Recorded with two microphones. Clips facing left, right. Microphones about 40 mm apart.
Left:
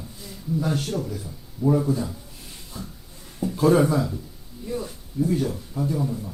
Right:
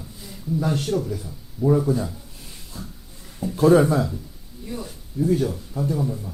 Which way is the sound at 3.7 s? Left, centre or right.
Right.